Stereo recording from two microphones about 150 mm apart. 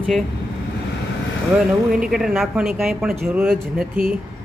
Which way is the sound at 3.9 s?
75° right (ahead or behind).